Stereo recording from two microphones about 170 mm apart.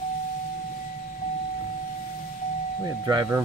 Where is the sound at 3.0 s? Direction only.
20° right (ahead or behind).